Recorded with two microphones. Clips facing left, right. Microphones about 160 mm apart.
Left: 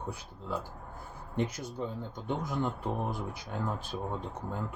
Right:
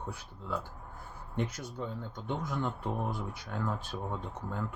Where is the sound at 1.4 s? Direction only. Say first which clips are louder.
Left 3 dB; 10° left (ahead or behind).